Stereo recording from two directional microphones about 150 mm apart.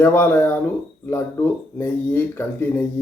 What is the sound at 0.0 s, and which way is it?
Speech, 15° left (ahead or behind).